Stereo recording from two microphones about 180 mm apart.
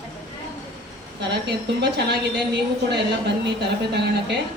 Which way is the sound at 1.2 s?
70° right (ahead or behind).